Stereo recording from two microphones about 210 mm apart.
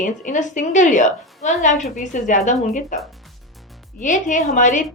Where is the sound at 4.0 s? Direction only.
35° left (ahead or behind).